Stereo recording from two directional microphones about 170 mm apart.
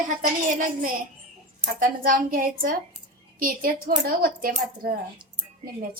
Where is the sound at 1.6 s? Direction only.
55° right (ahead or behind).